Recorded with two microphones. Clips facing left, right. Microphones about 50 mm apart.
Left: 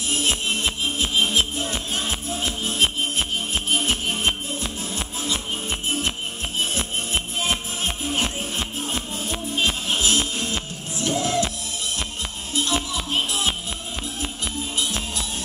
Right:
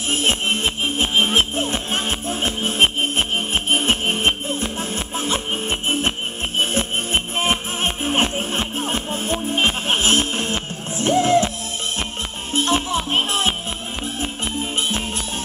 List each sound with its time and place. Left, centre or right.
0.1 s music: right
12.5 s music: right
14.6 s music: right